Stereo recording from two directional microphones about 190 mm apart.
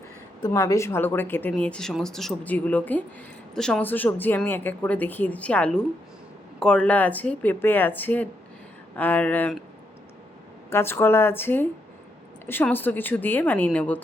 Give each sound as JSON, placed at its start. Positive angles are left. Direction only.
{"t": 0.4, "sound": "speech", "side_deg": 20}
{"t": 10.7, "sound": "speech", "side_deg": 10}